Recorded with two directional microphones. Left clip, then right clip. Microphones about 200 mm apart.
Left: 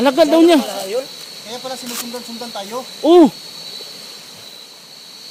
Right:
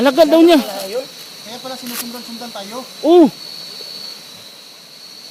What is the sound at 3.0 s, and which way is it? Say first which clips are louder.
Speech: even; 10° left (ahead or behind).